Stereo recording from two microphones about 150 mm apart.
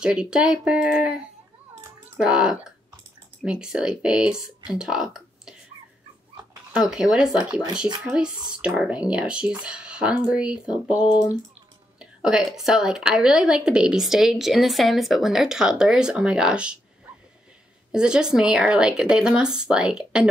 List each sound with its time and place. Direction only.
0.0 s a woman's voice: 5° right (ahead or behind)
2.1 s a woman's voice: 5° right (ahead or behind)
6.9 s a woman's voice: 5° right (ahead or behind)
11.1 s speech: 30° left (ahead or behind)
12.0 s a woman's voice: 5° right (ahead or behind)
17.9 s a woman's voice: 5° right (ahead or behind)